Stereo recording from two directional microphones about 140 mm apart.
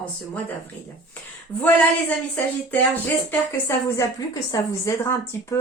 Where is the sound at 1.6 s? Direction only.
10° left (ahead or behind).